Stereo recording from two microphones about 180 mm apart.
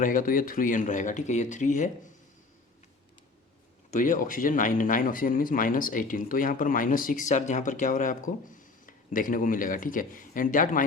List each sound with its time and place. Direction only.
0.0 s speech: 50° left (ahead or behind)
3.9 s speech: 45° left (ahead or behind)